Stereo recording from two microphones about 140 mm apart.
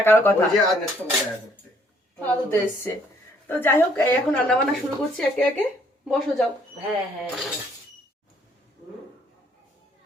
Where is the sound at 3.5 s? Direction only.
15° left (ahead or behind).